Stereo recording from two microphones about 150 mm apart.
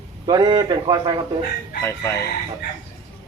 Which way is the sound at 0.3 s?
30° right (ahead or behind).